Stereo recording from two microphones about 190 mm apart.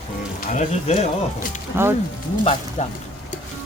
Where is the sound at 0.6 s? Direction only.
40° left (ahead or behind).